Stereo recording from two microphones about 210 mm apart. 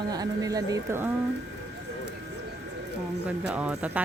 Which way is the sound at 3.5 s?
5° right (ahead or behind).